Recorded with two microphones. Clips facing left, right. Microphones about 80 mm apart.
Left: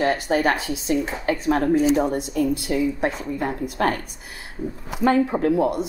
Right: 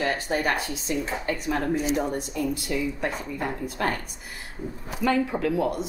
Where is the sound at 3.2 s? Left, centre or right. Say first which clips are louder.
Left 4 dB; centre.